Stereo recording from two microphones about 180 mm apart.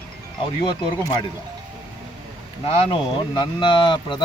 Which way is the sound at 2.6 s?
30° left (ahead or behind).